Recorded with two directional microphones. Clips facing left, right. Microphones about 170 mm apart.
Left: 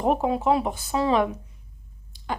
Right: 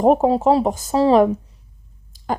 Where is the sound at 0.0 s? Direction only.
40° right (ahead or behind).